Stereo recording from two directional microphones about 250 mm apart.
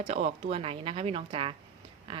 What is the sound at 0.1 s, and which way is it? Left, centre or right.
Speech, right.